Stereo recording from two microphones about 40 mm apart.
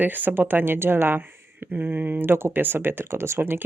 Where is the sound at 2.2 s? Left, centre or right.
Right.